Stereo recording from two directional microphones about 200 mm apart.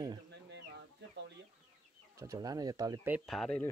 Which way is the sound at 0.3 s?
60° right (ahead or behind).